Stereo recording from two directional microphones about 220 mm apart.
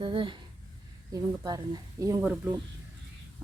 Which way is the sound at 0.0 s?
20° right (ahead or behind).